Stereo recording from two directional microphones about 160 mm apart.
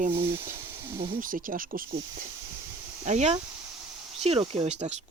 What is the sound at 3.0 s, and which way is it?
Speech, 45° right (ahead or behind).